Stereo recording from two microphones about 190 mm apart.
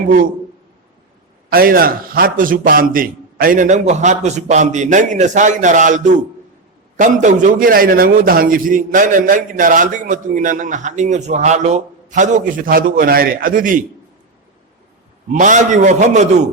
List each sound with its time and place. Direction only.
1.5 s a man's voice: 50° right (ahead or behind)
15.3 s a man's voice: 40° right (ahead or behind)